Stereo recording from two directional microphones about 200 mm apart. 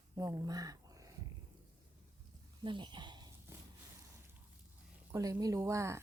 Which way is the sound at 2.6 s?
25° right (ahead or behind).